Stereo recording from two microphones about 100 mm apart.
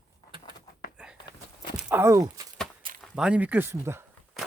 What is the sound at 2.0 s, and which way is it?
Speech, 35° right (ahead or behind).